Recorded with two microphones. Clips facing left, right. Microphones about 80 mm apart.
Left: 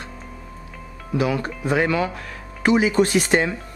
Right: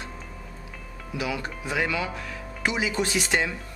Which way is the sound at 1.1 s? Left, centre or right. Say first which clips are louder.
Left 8 dB; left.